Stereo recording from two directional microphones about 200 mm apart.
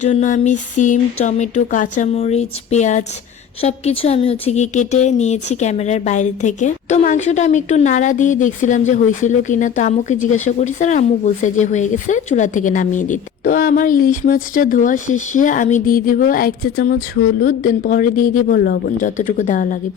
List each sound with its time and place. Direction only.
0.0 s a woman's voice: 35° left (ahead or behind)